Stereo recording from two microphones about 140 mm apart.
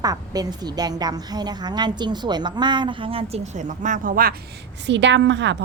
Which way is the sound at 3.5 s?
65° right (ahead or behind).